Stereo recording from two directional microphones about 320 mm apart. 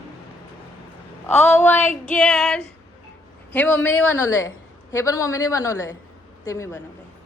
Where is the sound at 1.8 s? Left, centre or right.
Left.